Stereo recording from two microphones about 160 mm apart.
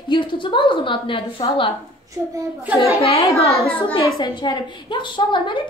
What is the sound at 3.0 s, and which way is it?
A woman's voice, 35° left (ahead or behind).